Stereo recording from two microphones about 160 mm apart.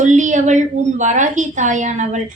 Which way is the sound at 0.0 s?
50° right (ahead or behind).